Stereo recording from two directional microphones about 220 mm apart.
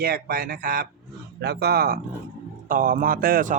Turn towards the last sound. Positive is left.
turn(degrees=-40)  # may be behind; listen again after turning